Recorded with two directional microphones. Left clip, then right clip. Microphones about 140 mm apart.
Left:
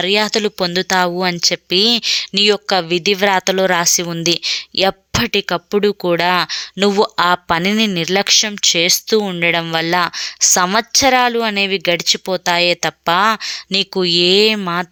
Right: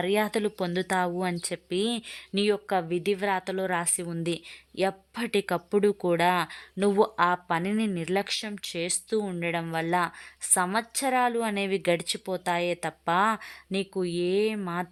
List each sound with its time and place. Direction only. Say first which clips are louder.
0.0 s speech: left 11 dB; 15° left (ahead or behind); by 5.2 s 40° left (ahead or behind)
5.2 s speech: left 9 dB; 15° left (ahead or behind); by 10.1 s 30° left (ahead or behind)
10.4 s speech: left 13 dB; 40° left (ahead or behind); by 13.8 s 20° left (ahead or behind)
13.9 s speech: left 15 dB; 35° left (ahead or behind)